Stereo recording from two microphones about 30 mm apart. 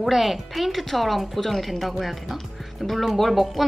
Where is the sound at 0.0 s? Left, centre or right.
Centre.